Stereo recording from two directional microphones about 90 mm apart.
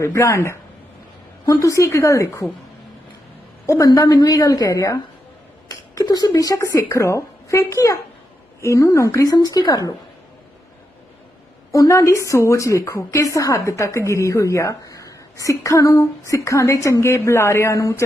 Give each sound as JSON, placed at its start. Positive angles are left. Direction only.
{"t": 0.0, "sound": "a woman's voice", "side_deg": 35}
{"t": 3.7, "sound": "a woman's voice", "side_deg": 40}
{"t": 5.6, "sound": "a sound", "side_deg": 45}
{"t": 6.9, "sound": "a woman's voice", "side_deg": 35}
{"t": 11.7, "sound": "a woman's voice", "side_deg": 35}